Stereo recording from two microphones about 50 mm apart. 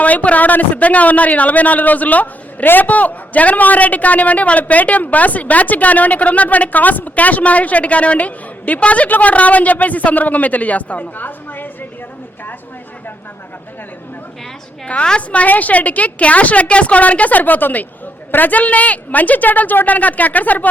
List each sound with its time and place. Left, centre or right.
0.0 s a man's voice: left
15.0 s a woman's voice: left